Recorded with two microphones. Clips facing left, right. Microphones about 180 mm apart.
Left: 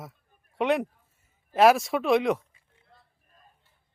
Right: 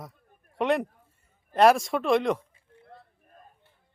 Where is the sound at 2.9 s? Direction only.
55° right (ahead or behind).